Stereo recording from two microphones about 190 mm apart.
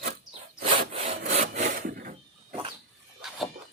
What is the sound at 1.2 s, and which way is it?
Wood, 40° right (ahead or behind).